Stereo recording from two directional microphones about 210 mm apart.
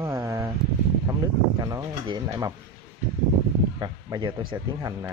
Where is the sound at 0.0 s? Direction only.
15° right (ahead or behind).